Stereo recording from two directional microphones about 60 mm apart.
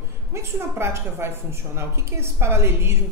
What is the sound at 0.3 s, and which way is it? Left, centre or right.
A woman's voice, right.